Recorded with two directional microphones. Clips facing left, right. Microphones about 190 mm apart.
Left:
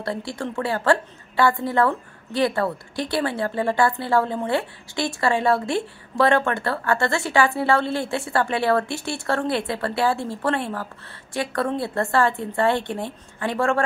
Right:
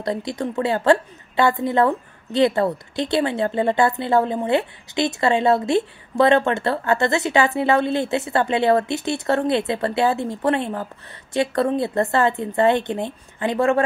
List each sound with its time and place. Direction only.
0.0 s a woman's voice: 20° right (ahead or behind)